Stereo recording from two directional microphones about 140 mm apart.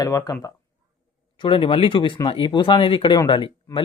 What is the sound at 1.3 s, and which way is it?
Speech, 35° left (ahead or behind).